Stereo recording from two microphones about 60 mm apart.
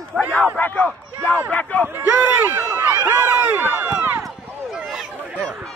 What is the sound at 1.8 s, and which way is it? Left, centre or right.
Speech, right.